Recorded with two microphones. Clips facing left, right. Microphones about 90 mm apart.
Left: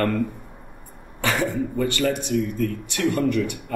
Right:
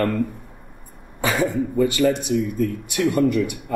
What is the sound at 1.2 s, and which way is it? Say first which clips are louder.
A man's voice: right 2 dB; 15° right (ahead or behind).